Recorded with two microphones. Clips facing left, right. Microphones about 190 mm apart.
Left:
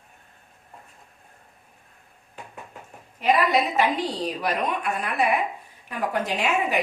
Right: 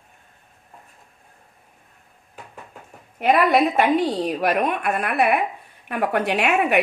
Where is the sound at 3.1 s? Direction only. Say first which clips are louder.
Right 4 dB; 55° right (ahead or behind).